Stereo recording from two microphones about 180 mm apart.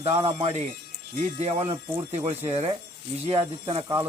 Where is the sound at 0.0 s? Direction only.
35° right (ahead or behind).